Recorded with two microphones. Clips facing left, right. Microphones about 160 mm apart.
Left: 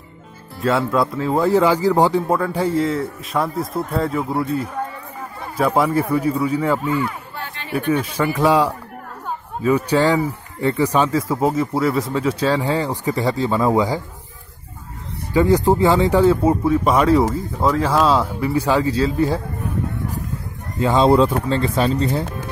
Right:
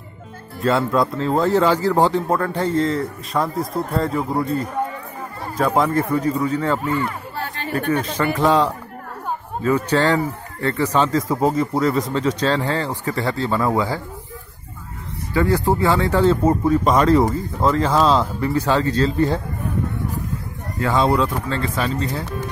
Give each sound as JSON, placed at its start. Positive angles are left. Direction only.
{"t": 0.6, "sound": "speech", "side_deg": 5}
{"t": 5.8, "sound": "speech", "side_deg": 10}
{"t": 7.3, "sound": "chatter", "side_deg": -40}
{"t": 7.9, "sound": "speech", "side_deg": 10}
{"t": 15.3, "sound": "speech", "side_deg": 20}
{"t": 20.8, "sound": "speech", "side_deg": 25}